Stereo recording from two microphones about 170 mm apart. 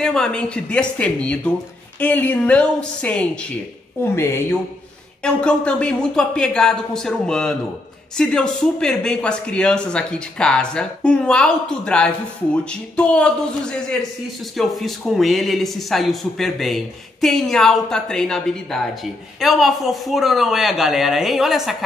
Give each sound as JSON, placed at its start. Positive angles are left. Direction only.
{"t": 0.0, "sound": "a man's voice", "side_deg": 5}